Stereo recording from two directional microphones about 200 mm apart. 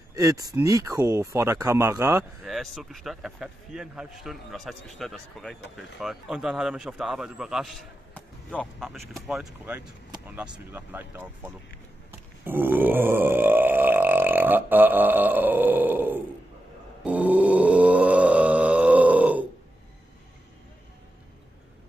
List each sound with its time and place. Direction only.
0.1 s speech: 20° right (ahead or behind)
2.4 s a man's voice: centre (ahead or behind)
12.1 s burping: 10° right (ahead or behind)
17.0 s grunt: 5° right (ahead or behind)